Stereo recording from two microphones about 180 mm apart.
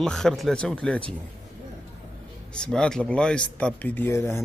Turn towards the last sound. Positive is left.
turn(degrees=15)  # may be behind; listen again after turning